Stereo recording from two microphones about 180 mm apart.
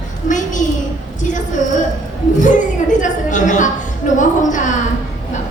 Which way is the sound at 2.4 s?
45° left (ahead or behind).